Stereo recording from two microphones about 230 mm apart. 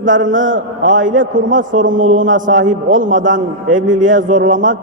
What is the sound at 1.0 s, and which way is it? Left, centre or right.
A man's voice, right.